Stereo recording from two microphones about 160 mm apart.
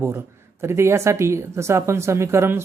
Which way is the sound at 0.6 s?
15° right (ahead or behind).